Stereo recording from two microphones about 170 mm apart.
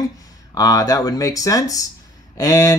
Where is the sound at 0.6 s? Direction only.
20° left (ahead or behind).